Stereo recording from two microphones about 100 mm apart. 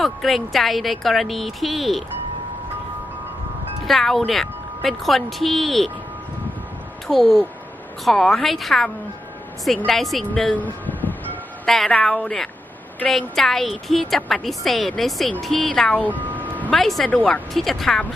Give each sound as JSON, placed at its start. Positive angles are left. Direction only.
{"t": 0.0, "sound": "speech", "side_deg": 0}
{"t": 3.8, "sound": "speech", "side_deg": 0}
{"t": 7.1, "sound": "speech", "side_deg": 5}
{"t": 10.3, "sound": "music", "side_deg": 10}
{"t": 11.6, "sound": "speech", "side_deg": 5}
{"t": 16.0, "sound": "a sound", "side_deg": -15}
{"t": 16.7, "sound": "speech", "side_deg": 5}